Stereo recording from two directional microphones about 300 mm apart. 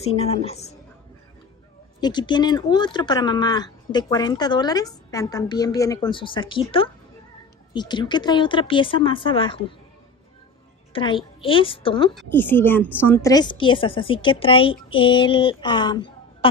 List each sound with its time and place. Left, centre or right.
0.1 s a woman's voice: centre
2.0 s speech: centre
10.9 s speech: centre
12.1 s speech: centre